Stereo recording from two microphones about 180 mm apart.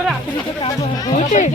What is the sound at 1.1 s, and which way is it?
Speech, 40° left (ahead or behind).